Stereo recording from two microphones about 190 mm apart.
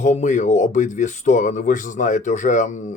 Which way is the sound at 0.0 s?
40° left (ahead or behind).